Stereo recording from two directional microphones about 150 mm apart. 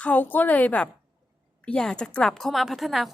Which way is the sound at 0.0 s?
10° left (ahead or behind).